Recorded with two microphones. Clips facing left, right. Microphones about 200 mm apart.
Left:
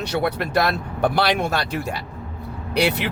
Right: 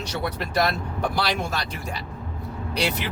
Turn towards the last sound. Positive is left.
turn(degrees=65)  # may be behind; listen again after turning